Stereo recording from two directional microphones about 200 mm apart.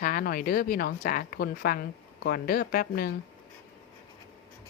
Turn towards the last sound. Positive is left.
turn(degrees=50)  # may be behind; listen again after turning